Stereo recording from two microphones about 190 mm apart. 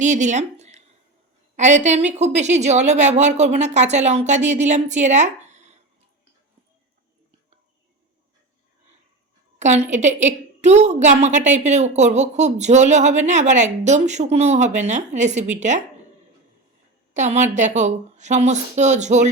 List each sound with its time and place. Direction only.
0.0 s a woman's voice: 40° right (ahead or behind)
9.6 s a woman's voice: 40° right (ahead or behind)
17.2 s a woman's voice: 40° right (ahead or behind)